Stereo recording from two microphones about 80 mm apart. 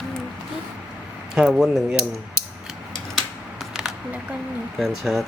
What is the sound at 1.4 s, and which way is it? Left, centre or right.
Speech, centre.